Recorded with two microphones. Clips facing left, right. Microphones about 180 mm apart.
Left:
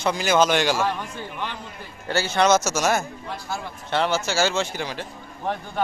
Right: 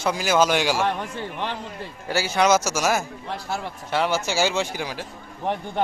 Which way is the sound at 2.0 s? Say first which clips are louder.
Even; 10° right (ahead or behind).